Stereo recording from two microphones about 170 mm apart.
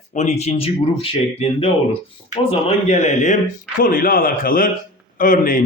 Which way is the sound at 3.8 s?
55° left (ahead or behind).